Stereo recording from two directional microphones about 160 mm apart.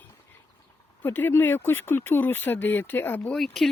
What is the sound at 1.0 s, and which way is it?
Speech, 10° left (ahead or behind).